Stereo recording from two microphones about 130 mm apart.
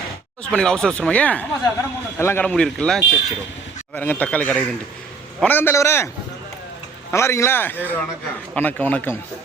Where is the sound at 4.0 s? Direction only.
15° left (ahead or behind).